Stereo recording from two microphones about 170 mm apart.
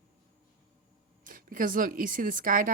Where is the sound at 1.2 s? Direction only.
55° right (ahead or behind).